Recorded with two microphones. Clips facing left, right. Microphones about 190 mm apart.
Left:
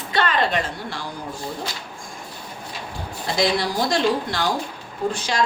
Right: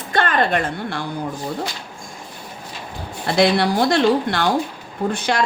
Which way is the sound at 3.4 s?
65° right (ahead or behind).